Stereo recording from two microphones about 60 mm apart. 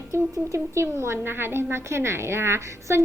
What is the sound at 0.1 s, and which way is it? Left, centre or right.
A woman's voice, right.